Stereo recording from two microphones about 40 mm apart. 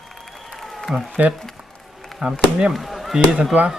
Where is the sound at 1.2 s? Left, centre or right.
Right.